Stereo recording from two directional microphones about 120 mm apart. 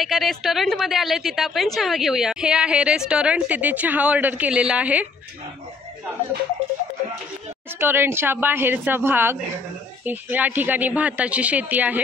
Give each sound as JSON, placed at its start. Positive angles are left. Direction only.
{"t": 0.0, "sound": "a woman's voice", "side_deg": 0}
{"t": 7.8, "sound": "speech", "side_deg": -20}